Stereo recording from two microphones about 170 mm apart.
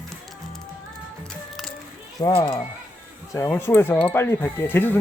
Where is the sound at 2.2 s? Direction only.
25° left (ahead or behind).